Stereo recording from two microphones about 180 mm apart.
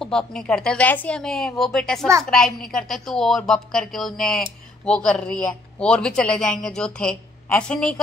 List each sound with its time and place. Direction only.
0.0 s speech: 5° left (ahead or behind)